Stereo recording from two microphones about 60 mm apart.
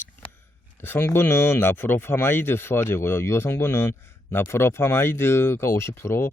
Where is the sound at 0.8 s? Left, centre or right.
Left.